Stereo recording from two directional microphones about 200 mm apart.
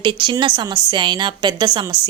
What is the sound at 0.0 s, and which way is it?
A woman's voice, 25° right (ahead or behind).